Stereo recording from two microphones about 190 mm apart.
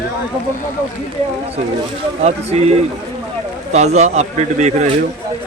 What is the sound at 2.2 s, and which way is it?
Speech, 35° right (ahead or behind).